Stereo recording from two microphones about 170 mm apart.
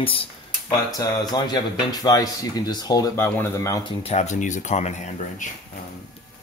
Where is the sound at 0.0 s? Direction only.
30° left (ahead or behind).